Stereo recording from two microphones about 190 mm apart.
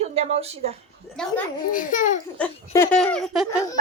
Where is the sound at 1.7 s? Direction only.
45° left (ahead or behind).